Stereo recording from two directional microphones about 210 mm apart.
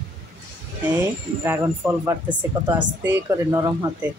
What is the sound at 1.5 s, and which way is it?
Speech, 10° right (ahead or behind).